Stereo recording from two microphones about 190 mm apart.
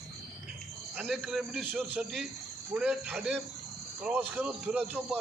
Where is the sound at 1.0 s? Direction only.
Centre (ahead or behind).